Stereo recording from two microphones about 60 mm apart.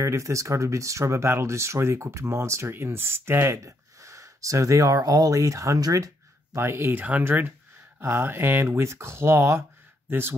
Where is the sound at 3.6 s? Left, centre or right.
Right.